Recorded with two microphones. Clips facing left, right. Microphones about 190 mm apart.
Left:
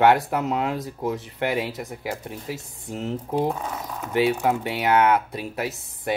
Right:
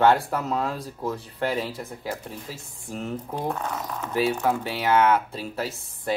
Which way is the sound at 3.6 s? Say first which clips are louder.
Right 1 dB; 10° left (ahead or behind).